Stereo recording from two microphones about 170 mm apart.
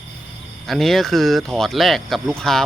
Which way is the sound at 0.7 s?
Centre (ahead or behind).